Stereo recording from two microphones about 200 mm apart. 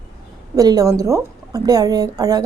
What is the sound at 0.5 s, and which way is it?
A woman's voice, 20° right (ahead or behind).